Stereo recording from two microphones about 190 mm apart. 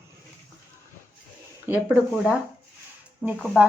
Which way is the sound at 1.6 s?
10° right (ahead or behind).